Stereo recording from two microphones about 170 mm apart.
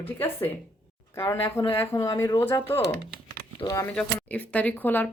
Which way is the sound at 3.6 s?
20° left (ahead or behind).